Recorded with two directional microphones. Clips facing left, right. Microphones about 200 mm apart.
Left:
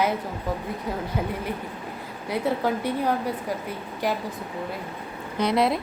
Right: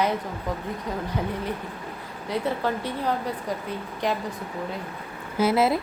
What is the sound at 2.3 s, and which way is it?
A woman's voice, 10° left (ahead or behind).